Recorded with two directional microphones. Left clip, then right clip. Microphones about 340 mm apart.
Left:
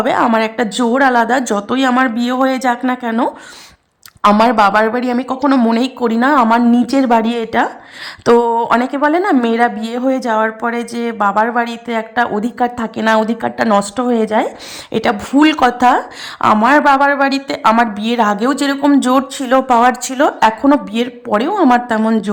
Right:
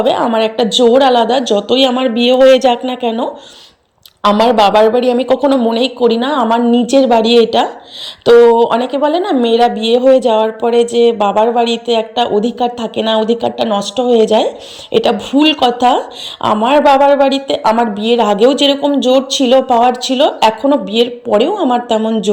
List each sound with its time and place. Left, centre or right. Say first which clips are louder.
0.0 s a woman's voice: right 1 dB; centre
18.2 s a woman's voice: right 4 dB; left